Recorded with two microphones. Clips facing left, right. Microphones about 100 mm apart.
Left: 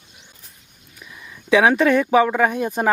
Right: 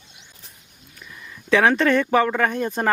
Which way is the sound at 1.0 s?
10° left (ahead or behind).